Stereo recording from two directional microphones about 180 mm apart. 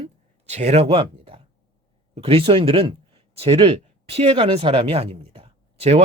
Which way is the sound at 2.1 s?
30° right (ahead or behind).